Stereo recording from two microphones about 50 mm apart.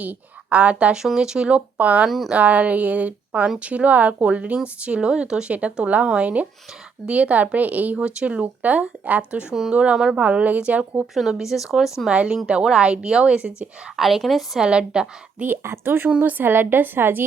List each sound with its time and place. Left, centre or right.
0.0 s speech: right
0.9 s speech: centre
1.5 s speech: right
2.0 s speech: centre
2.3 s a woman's voice: right
7.9 s speech: right
9.5 s speech: centre
11.0 s speech: centre
12.0 s speech: right
13.9 s speech: centre
14.6 s speech: centre
15.6 s a woman's voice: right
16.0 s speech: right
16.4 s a woman's voice: right